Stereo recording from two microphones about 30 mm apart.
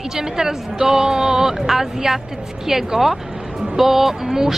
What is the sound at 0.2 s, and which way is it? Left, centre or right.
A woman's voice, centre.